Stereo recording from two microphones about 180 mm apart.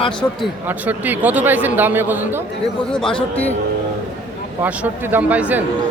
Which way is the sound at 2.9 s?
5° left (ahead or behind).